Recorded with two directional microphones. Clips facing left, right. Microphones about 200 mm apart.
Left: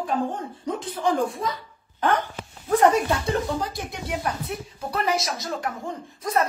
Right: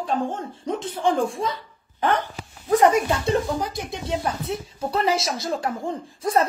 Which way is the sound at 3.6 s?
20° right (ahead or behind).